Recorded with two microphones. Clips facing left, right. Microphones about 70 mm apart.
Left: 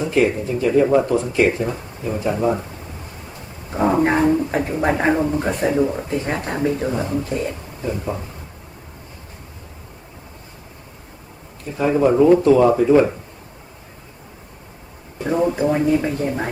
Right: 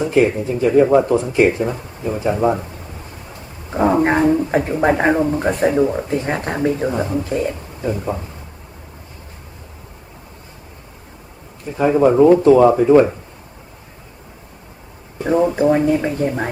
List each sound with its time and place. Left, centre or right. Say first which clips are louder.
0.0 s speech: right 3 dB; right
3.8 s speech: right 2 dB; centre
11.8 s speech: right 3 dB; centre
15.2 s speech: right 3 dB; centre